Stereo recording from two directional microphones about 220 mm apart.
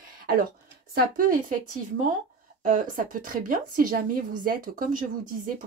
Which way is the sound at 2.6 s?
35° right (ahead or behind).